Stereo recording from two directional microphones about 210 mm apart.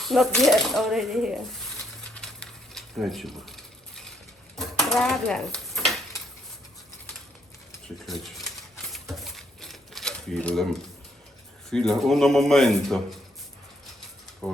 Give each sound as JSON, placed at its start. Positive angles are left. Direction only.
{"t": 0.0, "sound": "speech", "side_deg": 0}
{"t": 2.1, "sound": "a sound", "side_deg": 5}
{"t": 8.0, "sound": "speech", "side_deg": 0}
{"t": 8.9, "sound": "typewriter", "side_deg": 0}
{"t": 11.7, "sound": "speech", "side_deg": 0}
{"t": 14.4, "sound": "speech", "side_deg": 0}